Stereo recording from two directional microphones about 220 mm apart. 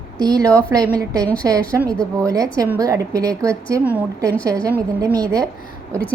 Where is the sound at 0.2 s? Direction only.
15° right (ahead or behind).